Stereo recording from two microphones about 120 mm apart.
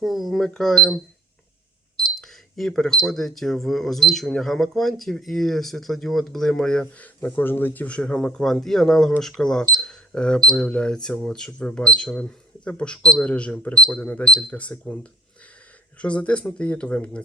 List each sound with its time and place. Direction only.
0.0 s speech: centre (ahead or behind)
2.1 s speech: centre (ahead or behind)
16.0 s speech: 10° left (ahead or behind)